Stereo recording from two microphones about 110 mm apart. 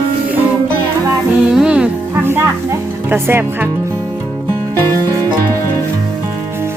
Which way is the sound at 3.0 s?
20° right (ahead or behind).